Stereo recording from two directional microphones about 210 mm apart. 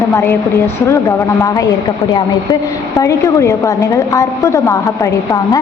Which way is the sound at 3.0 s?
15° left (ahead or behind).